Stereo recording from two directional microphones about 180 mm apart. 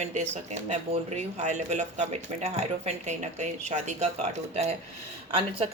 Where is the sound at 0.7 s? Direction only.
40° right (ahead or behind).